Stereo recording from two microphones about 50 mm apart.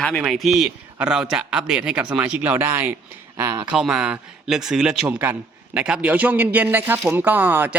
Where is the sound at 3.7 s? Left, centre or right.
Centre; by 7.7 s right.